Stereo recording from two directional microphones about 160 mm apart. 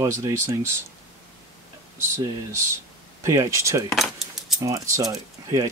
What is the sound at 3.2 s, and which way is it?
Speech, 20° right (ahead or behind).